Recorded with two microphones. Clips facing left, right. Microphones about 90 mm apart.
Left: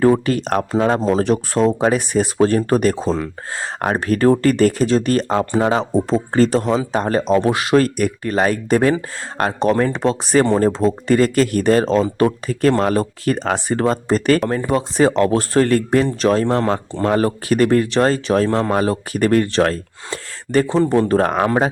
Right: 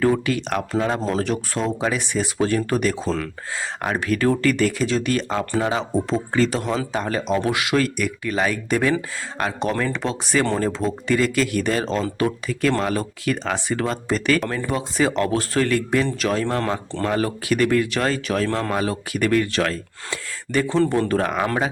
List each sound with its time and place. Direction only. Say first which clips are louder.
0.0 s speech: left 5 dB; 40° left (ahead or behind)
1.0 s speech: left 6 dB; 25° left (ahead or behind)
1.3 s speech: left 8 dB; 40° left (ahead or behind)
5.9 s speech: left 4 dB; 30° left (ahead or behind)
20.7 s speech: left 3 dB; 15° left (ahead or behind)
21.1 s speech: left 5 dB; 40° left (ahead or behind)